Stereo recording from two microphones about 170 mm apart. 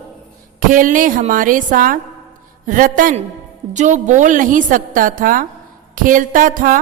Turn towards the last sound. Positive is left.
turn(degrees=-50)  # may be behind; listen again after turning